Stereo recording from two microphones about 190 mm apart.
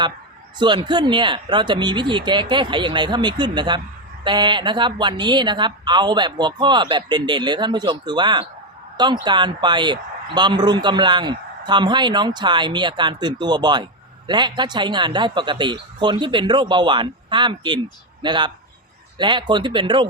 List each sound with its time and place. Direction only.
0.6 s a man's voice: 25° right (ahead or behind)